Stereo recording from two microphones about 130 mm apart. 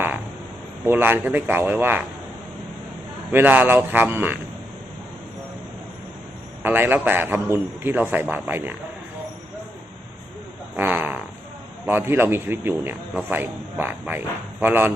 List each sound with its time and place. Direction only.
0.9 s a man's voice: 15° right (ahead or behind)
3.3 s a man's voice: 15° right (ahead or behind)
6.6 s a man's voice: 15° right (ahead or behind)
10.8 s fart: 15° right (ahead or behind)
11.9 s a man's voice: 15° right (ahead or behind)